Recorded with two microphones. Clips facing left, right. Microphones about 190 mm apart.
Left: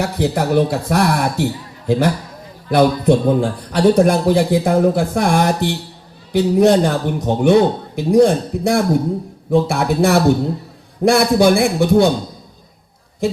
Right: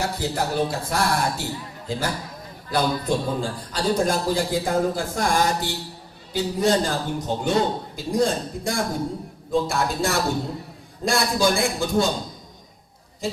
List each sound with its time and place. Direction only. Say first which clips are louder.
0.0 s a man's voice: left 7 dB; 65° left (ahead or behind)